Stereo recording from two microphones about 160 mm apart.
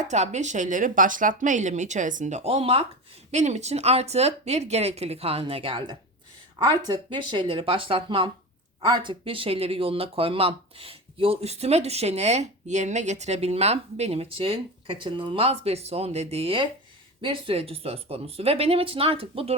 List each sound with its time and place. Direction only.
0.0 s speech: 45° right (ahead or behind)